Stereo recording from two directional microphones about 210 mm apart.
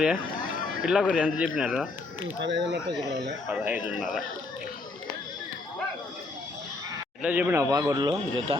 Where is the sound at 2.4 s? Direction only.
55° right (ahead or behind).